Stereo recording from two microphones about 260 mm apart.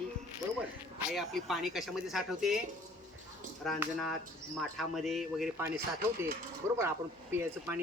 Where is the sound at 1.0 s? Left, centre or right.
Centre.